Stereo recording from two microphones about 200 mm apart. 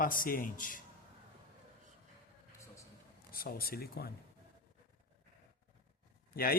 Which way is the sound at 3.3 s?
50° left (ahead or behind).